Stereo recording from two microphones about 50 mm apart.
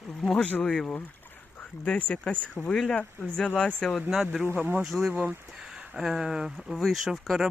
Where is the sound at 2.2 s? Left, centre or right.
Left.